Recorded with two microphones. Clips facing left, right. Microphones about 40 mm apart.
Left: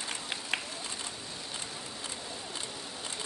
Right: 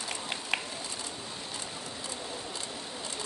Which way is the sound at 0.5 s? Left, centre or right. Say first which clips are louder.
Right 2 dB; centre.